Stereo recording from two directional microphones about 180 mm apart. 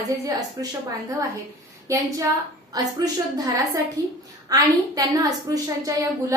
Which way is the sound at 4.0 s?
20° right (ahead or behind).